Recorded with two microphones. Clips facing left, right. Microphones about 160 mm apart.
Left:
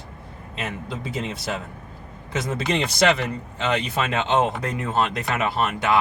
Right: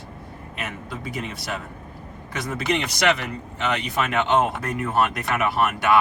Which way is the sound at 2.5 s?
25° left (ahead or behind).